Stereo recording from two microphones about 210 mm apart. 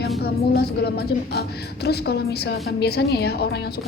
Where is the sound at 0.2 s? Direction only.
50° left (ahead or behind).